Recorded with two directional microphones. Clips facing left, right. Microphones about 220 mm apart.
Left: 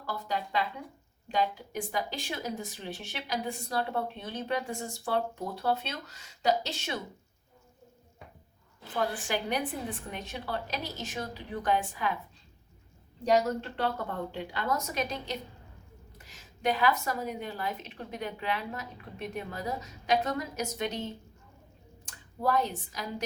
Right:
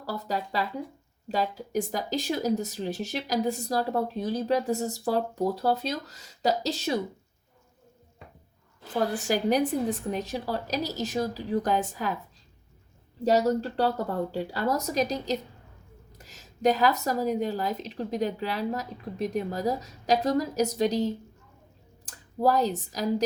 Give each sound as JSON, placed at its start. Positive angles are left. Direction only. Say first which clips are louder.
{"t": 0.0, "sound": "speech", "louder": "right 3 dB", "side_deg": -40}
{"t": 9.1, "sound": "speech", "louder": "right 7 dB", "side_deg": -40}
{"t": 13.4, "sound": "speech", "louder": "right 6 dB", "side_deg": -35}
{"t": 22.4, "sound": "speech", "louder": "right 5 dB", "side_deg": -40}